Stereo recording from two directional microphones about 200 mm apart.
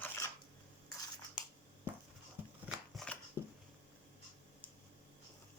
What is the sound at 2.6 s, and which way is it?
Shuffling cards, centre (ahead or behind).